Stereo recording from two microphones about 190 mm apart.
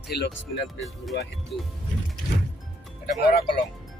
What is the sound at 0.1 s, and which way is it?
Speech, 55° left (ahead or behind).